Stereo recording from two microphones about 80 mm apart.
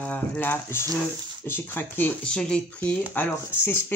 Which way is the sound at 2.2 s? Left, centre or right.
Centre.